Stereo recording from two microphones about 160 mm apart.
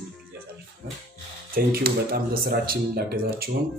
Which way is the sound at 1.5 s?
70° right (ahead or behind).